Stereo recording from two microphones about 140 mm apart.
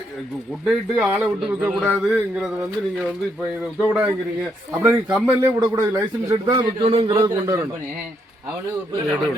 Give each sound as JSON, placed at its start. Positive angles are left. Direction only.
{"t": 0.6, "sound": "a man's voice", "side_deg": -5}
{"t": 3.8, "sound": "a man's voice", "side_deg": -15}
{"t": 5.7, "sound": "speech", "side_deg": -20}
{"t": 6.8, "sound": "a man's voice", "side_deg": -45}